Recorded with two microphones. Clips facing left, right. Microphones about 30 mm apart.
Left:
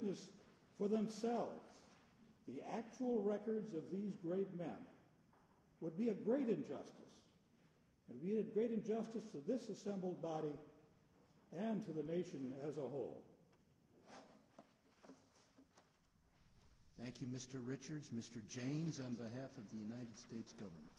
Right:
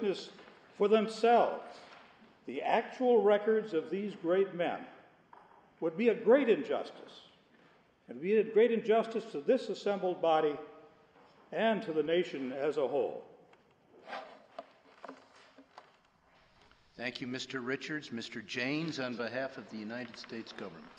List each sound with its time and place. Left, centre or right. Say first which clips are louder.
0.0 s a man's voice: right 12 dB; right
14.0 s a sound: right 17 dB; right
16.9 s speech: right 11 dB; right